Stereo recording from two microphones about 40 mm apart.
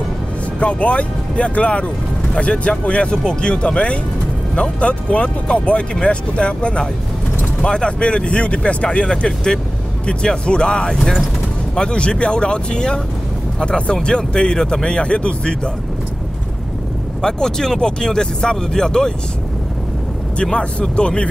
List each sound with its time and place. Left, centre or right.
0.6 s speech: left
11.0 s speech: centre
11.7 s speech: left
17.2 s speech: centre
20.4 s speech: left